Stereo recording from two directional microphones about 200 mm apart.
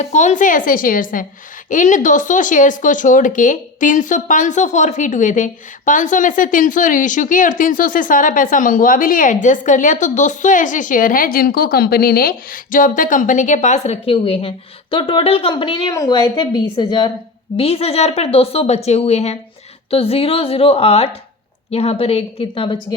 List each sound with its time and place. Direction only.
0.0 s a woman's voice: 35° left (ahead or behind)